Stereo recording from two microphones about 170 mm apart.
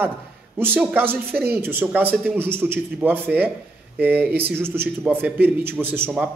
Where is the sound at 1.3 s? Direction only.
70° right (ahead or behind).